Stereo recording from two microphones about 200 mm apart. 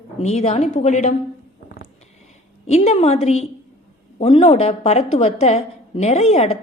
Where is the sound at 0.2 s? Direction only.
35° left (ahead or behind).